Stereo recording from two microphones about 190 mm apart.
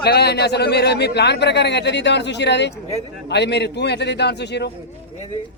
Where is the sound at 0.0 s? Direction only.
60° left (ahead or behind).